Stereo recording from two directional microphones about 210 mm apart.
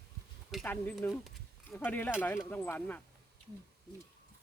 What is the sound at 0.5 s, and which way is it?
Speech, 10° left (ahead or behind).